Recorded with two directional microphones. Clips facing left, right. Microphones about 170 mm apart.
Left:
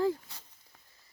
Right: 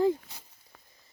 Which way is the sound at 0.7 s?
70° right (ahead or behind).